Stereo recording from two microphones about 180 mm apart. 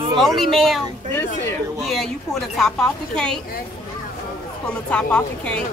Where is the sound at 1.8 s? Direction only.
Centre (ahead or behind).